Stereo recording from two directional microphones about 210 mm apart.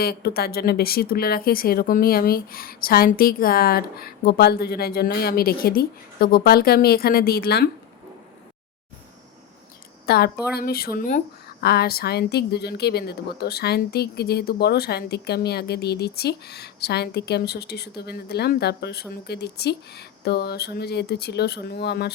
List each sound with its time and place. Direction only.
0.0 s a woman's voice: 50° left (ahead or behind)
10.1 s a woman's voice: 45° left (ahead or behind)